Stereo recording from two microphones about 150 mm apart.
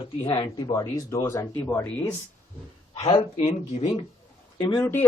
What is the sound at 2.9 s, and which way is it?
Speech, 35° left (ahead or behind).